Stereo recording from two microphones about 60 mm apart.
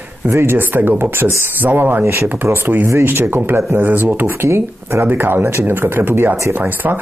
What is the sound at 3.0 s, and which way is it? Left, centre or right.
Speech, right.